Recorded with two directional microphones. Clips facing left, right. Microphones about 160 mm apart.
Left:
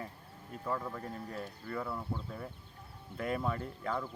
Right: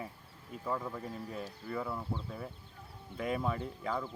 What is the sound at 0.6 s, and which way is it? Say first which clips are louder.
Speech: even; 5° right (ahead or behind).